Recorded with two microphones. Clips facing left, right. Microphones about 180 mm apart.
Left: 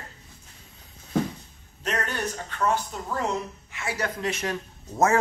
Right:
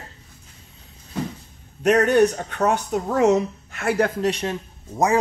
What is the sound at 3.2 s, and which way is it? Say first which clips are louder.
Speech: right 12 dB; 80° right.